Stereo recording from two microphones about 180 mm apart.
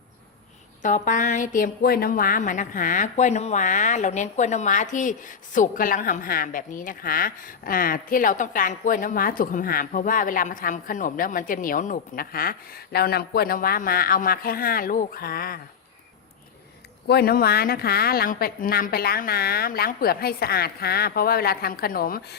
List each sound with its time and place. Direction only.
0.8 s a woman's voice: 45° left (ahead or behind)
17.1 s a woman's voice: 60° left (ahead or behind)